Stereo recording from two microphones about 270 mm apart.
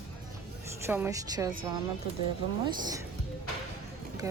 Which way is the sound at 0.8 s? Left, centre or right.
Centre.